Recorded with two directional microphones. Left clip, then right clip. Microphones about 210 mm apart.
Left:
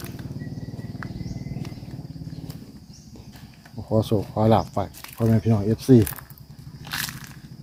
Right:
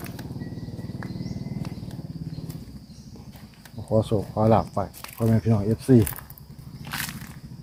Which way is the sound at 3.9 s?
15° left (ahead or behind).